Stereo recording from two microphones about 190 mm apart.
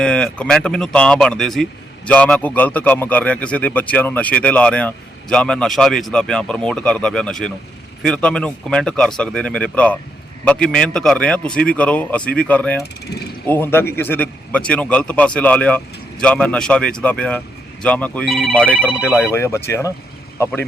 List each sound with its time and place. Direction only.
0.0 s a man's voice: 5° left (ahead or behind)
13.1 s speech: 60° left (ahead or behind)
13.5 s a man's voice: 10° left (ahead or behind)
18.8 s speech: 10° right (ahead or behind)
19.3 s a man's voice: 15° left (ahead or behind)